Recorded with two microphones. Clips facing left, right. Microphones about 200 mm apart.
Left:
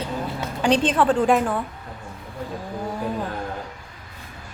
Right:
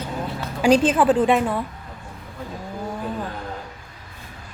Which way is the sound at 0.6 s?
10° right (ahead or behind).